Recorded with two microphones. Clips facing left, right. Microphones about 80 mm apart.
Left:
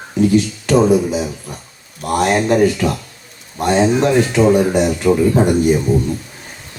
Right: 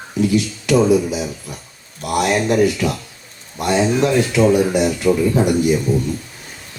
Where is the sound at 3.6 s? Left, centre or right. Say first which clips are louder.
Left 2 dB; left.